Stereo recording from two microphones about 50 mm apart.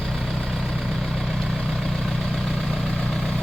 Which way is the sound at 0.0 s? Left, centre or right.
Centre.